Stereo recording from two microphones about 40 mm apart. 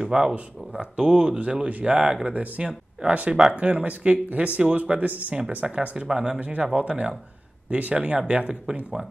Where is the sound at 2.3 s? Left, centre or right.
Right.